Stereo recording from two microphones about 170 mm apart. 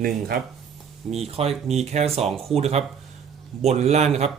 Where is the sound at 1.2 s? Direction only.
35° right (ahead or behind).